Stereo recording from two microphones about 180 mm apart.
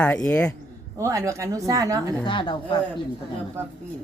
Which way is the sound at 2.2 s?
25° left (ahead or behind).